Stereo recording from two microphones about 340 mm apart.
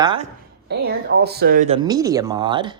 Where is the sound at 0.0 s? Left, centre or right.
Centre.